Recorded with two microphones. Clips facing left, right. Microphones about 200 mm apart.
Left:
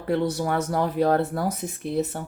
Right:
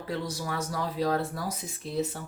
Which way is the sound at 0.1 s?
60° left (ahead or behind).